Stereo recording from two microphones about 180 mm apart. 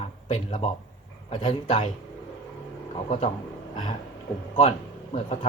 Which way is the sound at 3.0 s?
35° left (ahead or behind).